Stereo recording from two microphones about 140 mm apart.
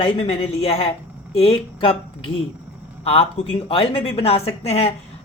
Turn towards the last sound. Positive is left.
turn(degrees=45)  # may be behind; listen again after turning